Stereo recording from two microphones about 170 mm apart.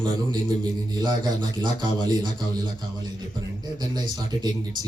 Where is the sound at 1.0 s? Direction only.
25° right (ahead or behind).